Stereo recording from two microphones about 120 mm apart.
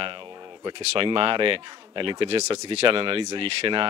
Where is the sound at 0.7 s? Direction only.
45° right (ahead or behind).